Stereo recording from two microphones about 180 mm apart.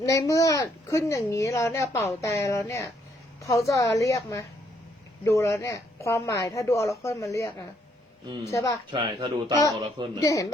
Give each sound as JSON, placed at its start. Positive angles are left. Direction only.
{"t": 0.0, "sound": "speech", "side_deg": 15}
{"t": 8.9, "sound": "speech", "side_deg": -25}
{"t": 10.2, "sound": "speech", "side_deg": 20}